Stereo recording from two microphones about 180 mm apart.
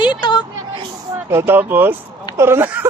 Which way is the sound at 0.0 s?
25° left (ahead or behind).